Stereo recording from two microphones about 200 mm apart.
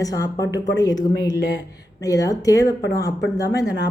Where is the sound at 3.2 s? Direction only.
55° left (ahead or behind).